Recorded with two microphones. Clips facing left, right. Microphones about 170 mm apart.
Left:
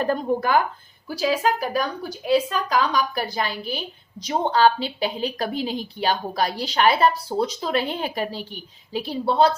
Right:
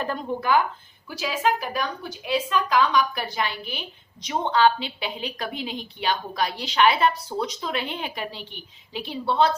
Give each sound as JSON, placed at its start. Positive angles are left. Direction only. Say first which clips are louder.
{"t": 0.0, "sound": "a woman's voice", "louder": "left 5 dB", "side_deg": 40}